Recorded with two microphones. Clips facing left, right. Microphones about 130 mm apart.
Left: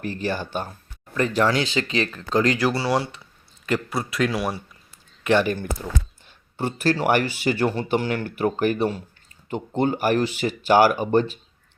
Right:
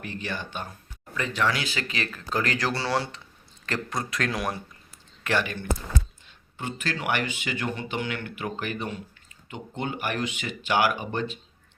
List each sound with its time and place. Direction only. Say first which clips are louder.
0.0 s speech: left 7 dB; 40° left (ahead or behind)
2.6 s speech: left 5 dB; 10° left (ahead or behind)
5.4 s speech: left 6 dB; 35° left (ahead or behind)